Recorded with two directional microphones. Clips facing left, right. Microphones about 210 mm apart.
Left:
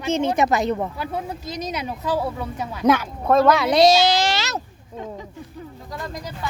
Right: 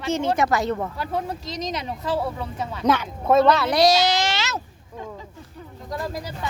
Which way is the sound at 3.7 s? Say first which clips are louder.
Left 3 dB; 25° left (ahead or behind).